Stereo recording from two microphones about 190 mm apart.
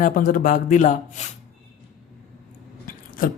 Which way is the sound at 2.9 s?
45° left (ahead or behind).